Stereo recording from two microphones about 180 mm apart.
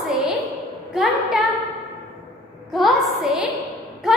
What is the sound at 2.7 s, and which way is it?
A woman's voice, centre (ahead or behind).